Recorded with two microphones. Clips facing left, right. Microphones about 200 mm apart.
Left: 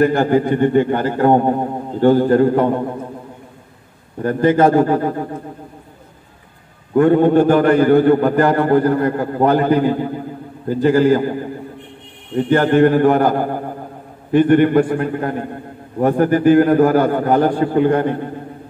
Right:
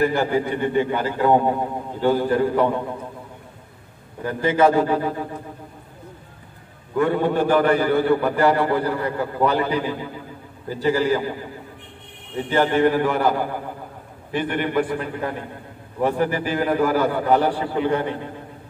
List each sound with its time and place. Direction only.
0.0 s a man's voice: 50° left (ahead or behind)
4.2 s a man's voice: 50° left (ahead or behind)
6.9 s a man's voice: 50° left (ahead or behind)